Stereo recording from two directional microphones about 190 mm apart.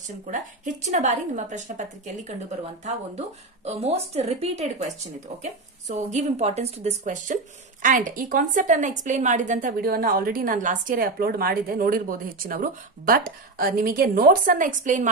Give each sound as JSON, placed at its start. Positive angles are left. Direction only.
{"t": 0.3, "sound": "a woman's voice", "side_deg": -40}